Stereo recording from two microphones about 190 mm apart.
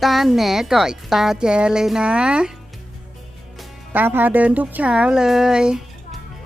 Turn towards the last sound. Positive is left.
turn(degrees=-5)  # may be behind; listen again after turning